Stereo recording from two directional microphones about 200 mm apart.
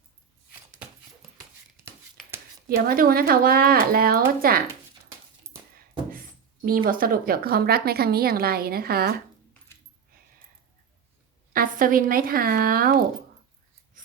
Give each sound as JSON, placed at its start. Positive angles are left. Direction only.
{"t": 2.6, "sound": "a woman's voice", "side_deg": -45}
{"t": 5.5, "sound": "coin", "side_deg": -30}
{"t": 6.7, "sound": "a woman's voice", "side_deg": -45}
{"t": 11.5, "sound": "a woman's voice", "side_deg": -45}